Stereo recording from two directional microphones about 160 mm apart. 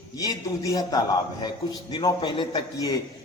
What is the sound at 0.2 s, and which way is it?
A man's voice, 20° left (ahead or behind).